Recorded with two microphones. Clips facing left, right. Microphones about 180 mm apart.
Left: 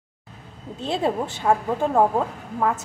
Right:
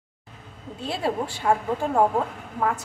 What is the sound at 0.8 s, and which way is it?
A woman's voice, 20° left (ahead or behind).